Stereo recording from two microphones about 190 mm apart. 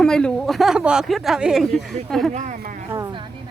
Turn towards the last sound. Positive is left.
turn(degrees=-20)  # may be behind; listen again after turning